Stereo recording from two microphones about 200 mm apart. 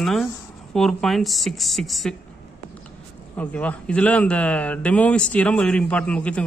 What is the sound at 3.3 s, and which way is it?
A man's voice, 5° left (ahead or behind).